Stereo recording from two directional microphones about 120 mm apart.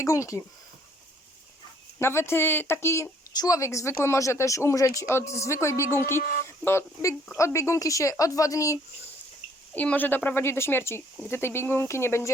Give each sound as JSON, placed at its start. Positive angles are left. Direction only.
{"t": 0.0, "sound": "speech", "side_deg": 25}
{"t": 2.0, "sound": "speech", "side_deg": 20}
{"t": 9.7, "sound": "a woman's voice", "side_deg": 10}